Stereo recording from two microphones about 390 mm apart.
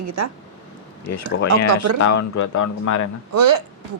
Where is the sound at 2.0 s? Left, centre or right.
Left.